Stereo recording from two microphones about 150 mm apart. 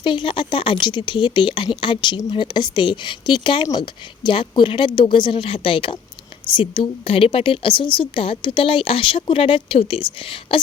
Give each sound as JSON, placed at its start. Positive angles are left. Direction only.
{"t": 0.0, "sound": "speech", "side_deg": 35}